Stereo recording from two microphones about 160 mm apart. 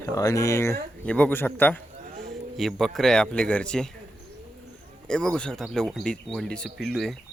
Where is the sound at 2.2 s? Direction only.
Centre (ahead or behind).